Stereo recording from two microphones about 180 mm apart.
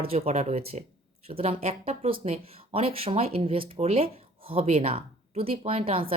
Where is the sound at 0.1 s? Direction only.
35° right (ahead or behind).